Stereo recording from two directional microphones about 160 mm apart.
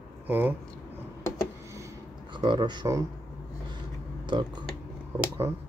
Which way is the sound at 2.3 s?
30° right (ahead or behind).